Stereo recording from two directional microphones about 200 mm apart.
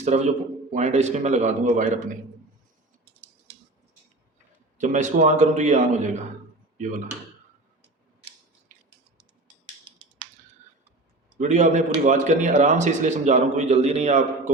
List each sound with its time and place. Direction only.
0.1 s a man's voice: 35° right (ahead or behind)
4.8 s a man's voice: 40° right (ahead or behind)
11.3 s a man's voice: 35° right (ahead or behind)